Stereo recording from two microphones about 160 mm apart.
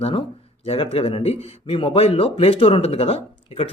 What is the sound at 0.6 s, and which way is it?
Speech, 35° left (ahead or behind).